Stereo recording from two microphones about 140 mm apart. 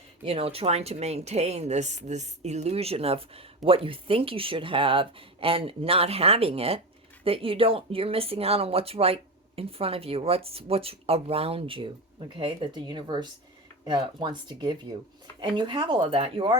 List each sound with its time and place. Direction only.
0.3 s a woman's voice: 45° right (ahead or behind)